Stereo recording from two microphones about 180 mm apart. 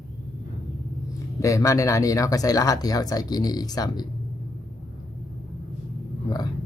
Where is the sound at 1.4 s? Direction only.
15° left (ahead or behind).